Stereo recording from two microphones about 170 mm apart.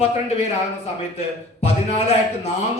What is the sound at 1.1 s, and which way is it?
Speech, 40° left (ahead or behind).